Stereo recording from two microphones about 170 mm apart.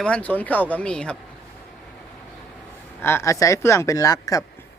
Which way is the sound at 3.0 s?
15° left (ahead or behind).